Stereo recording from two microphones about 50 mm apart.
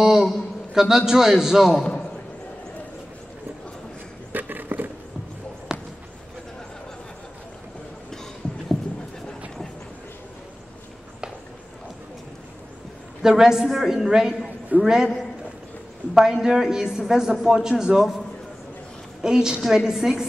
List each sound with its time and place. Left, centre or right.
0.0 s a man's voice: centre
4.3 s a sound: right
5.7 s basketball bounce: centre
13.2 s a woman's voice: centre
16.2 s a woman's voice: centre
19.2 s a woman's voice: centre